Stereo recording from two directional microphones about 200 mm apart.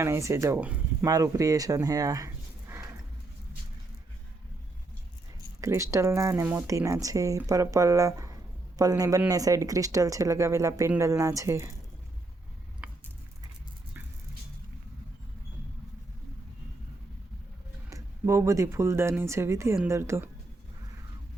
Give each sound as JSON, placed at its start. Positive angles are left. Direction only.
{"t": 0.0, "sound": "speech", "side_deg": -15}
{"t": 5.5, "sound": "speech", "side_deg": -15}
{"t": 17.8, "sound": "speech", "side_deg": -15}